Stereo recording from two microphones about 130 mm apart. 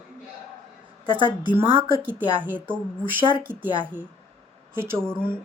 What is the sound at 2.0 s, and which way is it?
Speech, 15° right (ahead or behind).